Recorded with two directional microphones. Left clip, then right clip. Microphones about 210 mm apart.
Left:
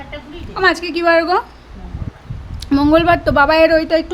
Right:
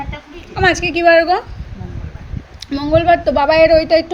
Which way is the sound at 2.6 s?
25° left (ahead or behind).